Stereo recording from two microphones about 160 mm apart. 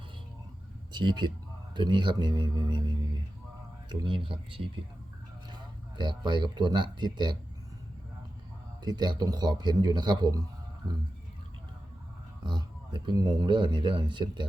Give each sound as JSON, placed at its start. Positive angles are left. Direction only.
{"t": 0.9, "sound": "speech", "side_deg": -30}
{"t": 3.8, "sound": "speech", "side_deg": -30}
{"t": 6.0, "sound": "speech", "side_deg": -25}
{"t": 8.8, "sound": "speech", "side_deg": -25}
{"t": 12.4, "sound": "speech", "side_deg": -30}